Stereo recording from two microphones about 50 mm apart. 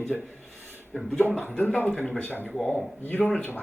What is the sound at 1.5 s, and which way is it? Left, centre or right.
Speech, left.